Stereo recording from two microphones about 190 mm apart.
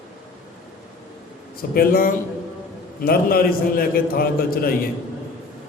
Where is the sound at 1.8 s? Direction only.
50° left (ahead or behind).